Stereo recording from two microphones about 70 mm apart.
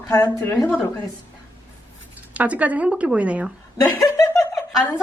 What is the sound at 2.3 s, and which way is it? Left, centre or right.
Speech, right.